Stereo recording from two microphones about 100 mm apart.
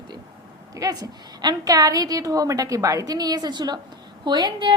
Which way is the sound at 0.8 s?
40° right (ahead or behind).